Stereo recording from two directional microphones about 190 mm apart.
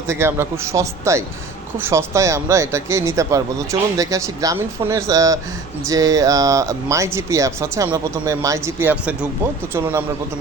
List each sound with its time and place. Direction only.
0.1 s speech: 15° right (ahead or behind)